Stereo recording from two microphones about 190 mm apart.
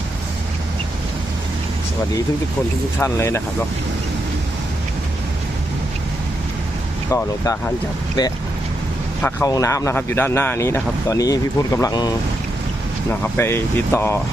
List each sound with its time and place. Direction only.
3.0 s speech: 15° left (ahead or behind)
7.1 s speech: 15° left (ahead or behind)
9.2 s speech: 15° left (ahead or behind)